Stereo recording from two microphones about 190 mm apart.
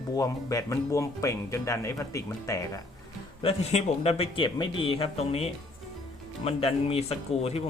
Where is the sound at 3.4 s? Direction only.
30° left (ahead or behind).